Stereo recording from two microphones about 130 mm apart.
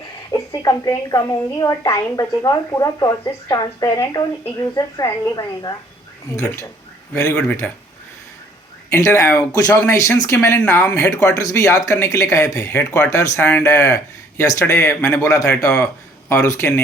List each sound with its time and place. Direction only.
0.6 s a woman's voice: 30° left (ahead or behind)
7.6 s speech: 10° left (ahead or behind)
8.9 s speech: 25° left (ahead or behind)
11.1 s speech: 25° left (ahead or behind)